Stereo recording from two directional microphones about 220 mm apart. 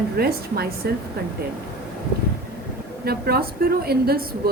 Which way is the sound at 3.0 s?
45° right (ahead or behind).